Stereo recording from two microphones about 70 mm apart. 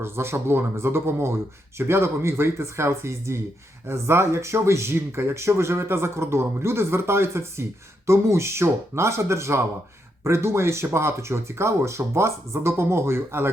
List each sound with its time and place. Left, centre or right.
0.0 s speech: right